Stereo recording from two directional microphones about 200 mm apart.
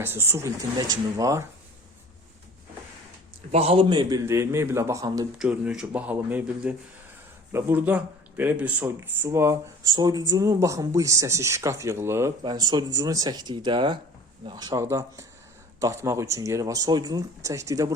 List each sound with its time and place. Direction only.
0.0 s speech: 10° right (ahead or behind)
3.5 s speech: 30° right (ahead or behind)
5.4 s speech: 5° right (ahead or behind)